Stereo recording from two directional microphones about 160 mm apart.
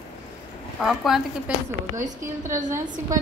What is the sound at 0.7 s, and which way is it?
A woman's voice, centre (ahead or behind).